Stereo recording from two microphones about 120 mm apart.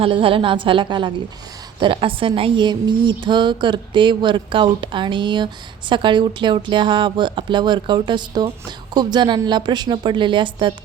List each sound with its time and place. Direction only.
0.0 s a woman's voice: 50° right (ahead or behind)